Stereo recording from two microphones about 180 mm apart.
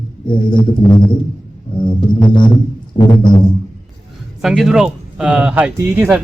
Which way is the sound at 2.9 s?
30° left (ahead or behind).